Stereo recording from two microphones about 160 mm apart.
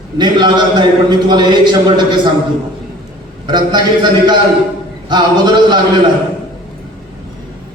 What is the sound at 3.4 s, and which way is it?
Speech, 25° right (ahead or behind).